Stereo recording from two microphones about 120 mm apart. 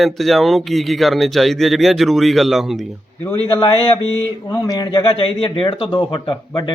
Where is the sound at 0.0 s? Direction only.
Centre (ahead or behind).